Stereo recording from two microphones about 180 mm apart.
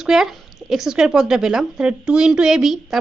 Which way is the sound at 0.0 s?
Centre (ahead or behind).